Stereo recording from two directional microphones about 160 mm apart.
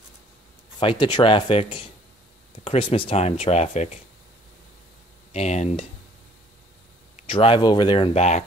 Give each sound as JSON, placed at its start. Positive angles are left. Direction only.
{"t": 0.7, "sound": "speech", "side_deg": 30}
{"t": 5.3, "sound": "speech", "side_deg": 45}
{"t": 7.2, "sound": "speech", "side_deg": 35}